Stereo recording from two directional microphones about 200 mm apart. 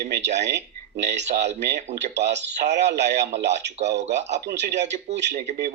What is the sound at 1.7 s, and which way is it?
Speech, 35° right (ahead or behind).